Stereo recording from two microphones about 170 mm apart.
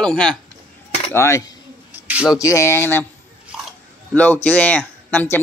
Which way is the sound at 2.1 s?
5° right (ahead or behind).